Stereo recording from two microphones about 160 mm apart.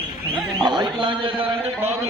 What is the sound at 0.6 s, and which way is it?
Speech, 30° right (ahead or behind).